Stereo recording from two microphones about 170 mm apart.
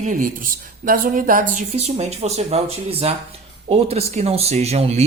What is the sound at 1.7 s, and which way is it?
Speech, 40° right (ahead or behind).